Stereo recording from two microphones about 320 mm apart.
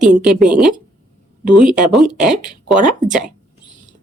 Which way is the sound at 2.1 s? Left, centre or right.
Right.